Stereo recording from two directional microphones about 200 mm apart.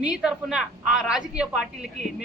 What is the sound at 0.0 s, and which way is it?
A woman's voice, 5° right (ahead or behind).